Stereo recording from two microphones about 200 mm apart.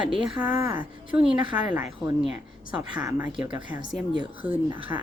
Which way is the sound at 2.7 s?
20° right (ahead or behind).